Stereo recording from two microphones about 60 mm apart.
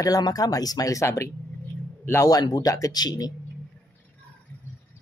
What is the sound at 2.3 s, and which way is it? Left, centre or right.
Speech, left.